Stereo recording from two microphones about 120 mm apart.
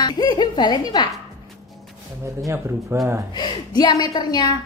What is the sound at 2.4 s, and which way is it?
Speech, 25° right (ahead or behind).